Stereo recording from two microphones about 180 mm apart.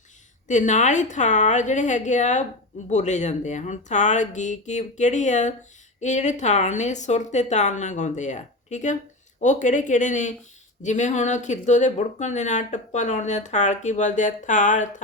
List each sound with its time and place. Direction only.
0.4 s a woman's voice: 40° left (ahead or behind)